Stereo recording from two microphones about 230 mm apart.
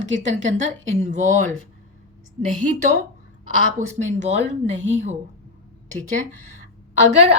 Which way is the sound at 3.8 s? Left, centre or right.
Right.